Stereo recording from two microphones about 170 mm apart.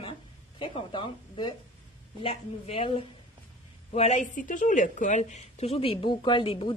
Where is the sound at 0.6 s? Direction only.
30° left (ahead or behind).